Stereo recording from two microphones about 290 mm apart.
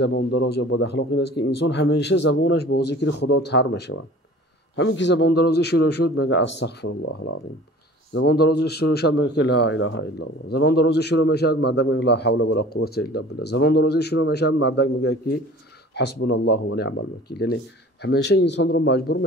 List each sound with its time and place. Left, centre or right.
0.0 s a man's voice: left
8.1 s a man's voice: left
16.2 s a man's voice: left